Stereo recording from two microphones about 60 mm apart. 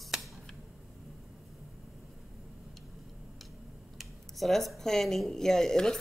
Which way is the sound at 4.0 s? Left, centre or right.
Centre.